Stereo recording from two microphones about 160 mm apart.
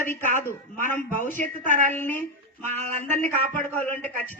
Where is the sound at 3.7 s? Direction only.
10° left (ahead or behind).